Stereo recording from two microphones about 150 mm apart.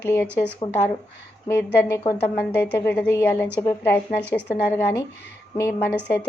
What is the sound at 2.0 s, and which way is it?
Speech, 35° left (ahead or behind).